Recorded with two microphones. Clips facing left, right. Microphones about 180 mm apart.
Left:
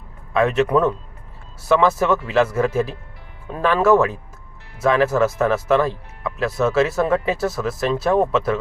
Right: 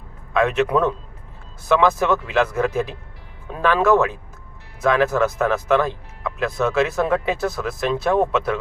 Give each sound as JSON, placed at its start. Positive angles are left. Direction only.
{"t": 0.4, "sound": "speech", "side_deg": 5}